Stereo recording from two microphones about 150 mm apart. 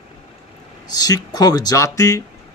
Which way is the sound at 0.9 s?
25° left (ahead or behind).